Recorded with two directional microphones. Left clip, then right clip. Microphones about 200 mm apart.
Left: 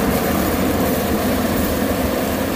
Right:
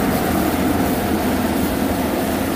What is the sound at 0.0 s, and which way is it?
Vehicle, 25° left (ahead or behind).